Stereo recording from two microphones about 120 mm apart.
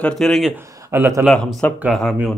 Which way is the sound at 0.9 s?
25° right (ahead or behind).